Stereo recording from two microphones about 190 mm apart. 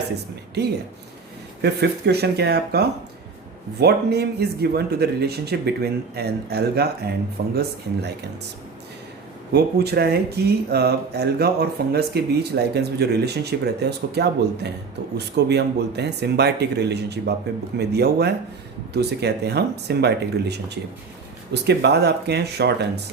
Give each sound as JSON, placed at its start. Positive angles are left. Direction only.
{"t": 0.6, "sound": "speech", "side_deg": -60}
{"t": 9.5, "sound": "speech", "side_deg": -60}